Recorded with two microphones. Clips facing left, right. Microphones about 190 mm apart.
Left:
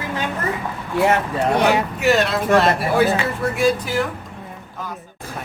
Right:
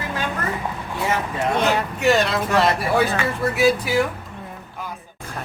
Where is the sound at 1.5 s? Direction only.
15° left (ahead or behind).